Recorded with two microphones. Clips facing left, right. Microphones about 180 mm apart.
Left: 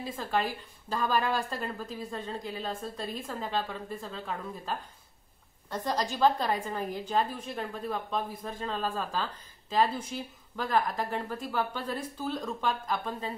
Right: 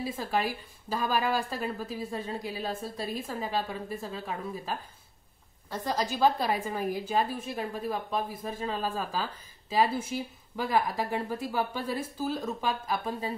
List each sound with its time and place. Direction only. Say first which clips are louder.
0.0 s a woman's voice: right 1 dB; 10° right (ahead or behind)